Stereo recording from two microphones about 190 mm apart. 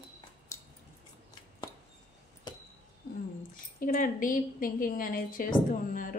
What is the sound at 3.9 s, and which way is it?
A woman's voice, 45° left (ahead or behind).